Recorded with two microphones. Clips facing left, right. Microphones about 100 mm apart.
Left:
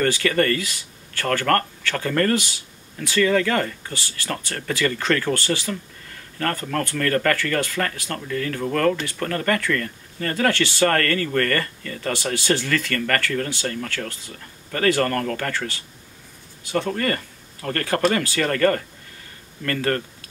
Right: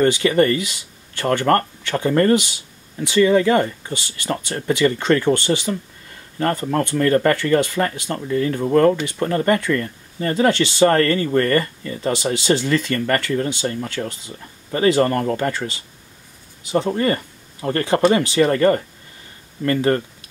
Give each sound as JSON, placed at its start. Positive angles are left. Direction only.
{"t": 0.0, "sound": "speech", "side_deg": -20}